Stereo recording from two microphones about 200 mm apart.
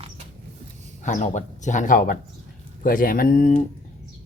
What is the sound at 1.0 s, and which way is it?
Speech, 40° left (ahead or behind).